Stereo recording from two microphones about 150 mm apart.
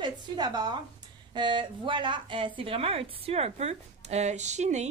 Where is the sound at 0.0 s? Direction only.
25° right (ahead or behind).